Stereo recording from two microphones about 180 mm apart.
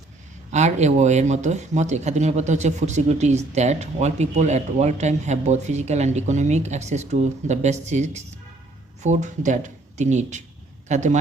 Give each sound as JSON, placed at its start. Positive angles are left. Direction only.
{"t": 0.5, "sound": "speech", "side_deg": -40}